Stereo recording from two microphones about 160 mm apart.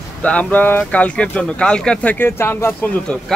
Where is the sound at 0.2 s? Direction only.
10° left (ahead or behind).